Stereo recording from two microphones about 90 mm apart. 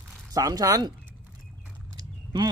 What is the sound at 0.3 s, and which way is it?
Speech, 40° right (ahead or behind).